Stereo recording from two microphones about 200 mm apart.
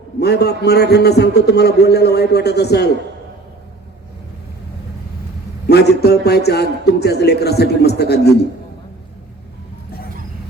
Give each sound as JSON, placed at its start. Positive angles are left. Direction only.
{"t": 0.2, "sound": "a man's voice", "side_deg": 55}
{"t": 5.6, "sound": "a man's voice", "side_deg": 55}